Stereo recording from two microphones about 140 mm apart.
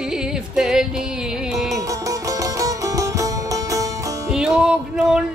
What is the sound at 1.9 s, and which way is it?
Music, 25° right (ahead or behind).